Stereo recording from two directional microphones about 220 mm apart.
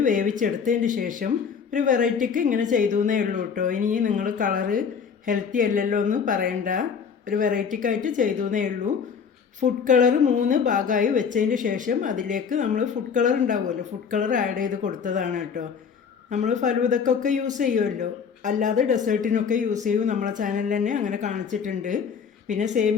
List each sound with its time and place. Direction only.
0.0 s a woman's voice: 35° right (ahead or behind)